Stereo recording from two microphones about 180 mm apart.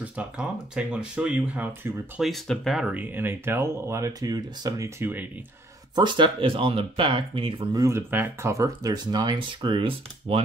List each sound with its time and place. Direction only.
0.0 s speech: 5° right (ahead or behind)
2.2 s speech: centre (ahead or behind)
5.9 s speech: 25° right (ahead or behind)